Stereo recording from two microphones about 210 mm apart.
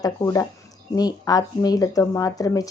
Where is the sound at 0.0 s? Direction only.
15° left (ahead or behind).